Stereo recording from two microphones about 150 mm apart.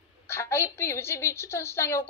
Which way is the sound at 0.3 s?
15° left (ahead or behind).